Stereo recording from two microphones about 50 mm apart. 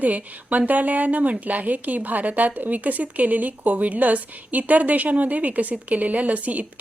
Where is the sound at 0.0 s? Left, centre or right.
Right.